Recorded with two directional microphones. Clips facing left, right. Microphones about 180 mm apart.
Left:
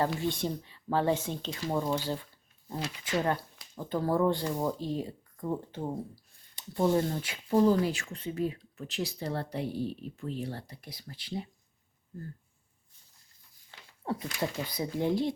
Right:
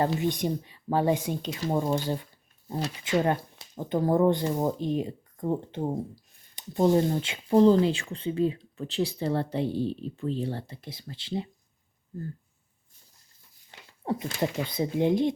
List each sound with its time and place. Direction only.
0.0 s speech: 20° right (ahead or behind)
3.0 s speech: 20° right (ahead or behind)
6.6 s a sound: 20° right (ahead or behind)
6.9 s speech: 20° right (ahead or behind)
13.7 s speech: 20° right (ahead or behind)